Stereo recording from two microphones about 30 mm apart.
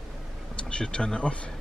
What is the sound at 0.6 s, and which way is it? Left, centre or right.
Speech, left.